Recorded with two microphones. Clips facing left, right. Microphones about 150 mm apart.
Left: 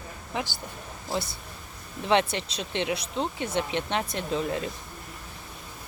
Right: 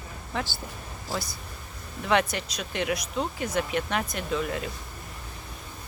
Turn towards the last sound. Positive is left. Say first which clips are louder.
# left 1 dB
turn(degrees=30)  # may be behind; listen again after turning